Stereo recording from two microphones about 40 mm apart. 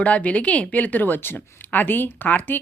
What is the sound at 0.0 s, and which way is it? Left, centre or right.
Speech, left.